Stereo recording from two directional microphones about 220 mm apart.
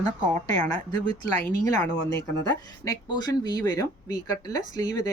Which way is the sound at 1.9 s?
50° left (ahead or behind).